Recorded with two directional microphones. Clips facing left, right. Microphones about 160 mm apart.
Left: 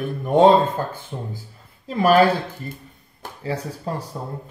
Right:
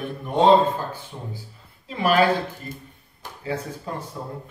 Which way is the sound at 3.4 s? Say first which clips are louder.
Left 2 dB; 35° left (ahead or behind).